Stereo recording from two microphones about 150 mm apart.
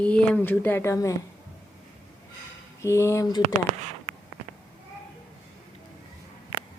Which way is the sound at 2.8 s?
20° left (ahead or behind).